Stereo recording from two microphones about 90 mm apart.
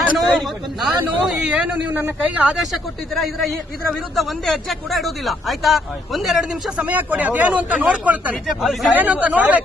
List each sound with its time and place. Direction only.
0.2 s a man's voice: 5° right (ahead or behind)
2.7 s a man's voice: centre (ahead or behind); by 8.4 s 15° right (ahead or behind)
8.4 s a man's voice: centre (ahead or behind)
9.2 s speech: 15° right (ahead or behind)